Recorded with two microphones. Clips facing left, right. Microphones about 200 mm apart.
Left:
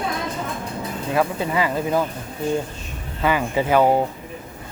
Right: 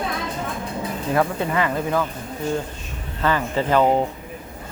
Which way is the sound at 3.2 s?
10° left (ahead or behind).